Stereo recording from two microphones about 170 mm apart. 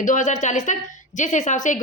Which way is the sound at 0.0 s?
50° left (ahead or behind).